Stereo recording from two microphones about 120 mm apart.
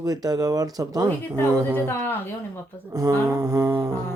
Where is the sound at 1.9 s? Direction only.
15° left (ahead or behind).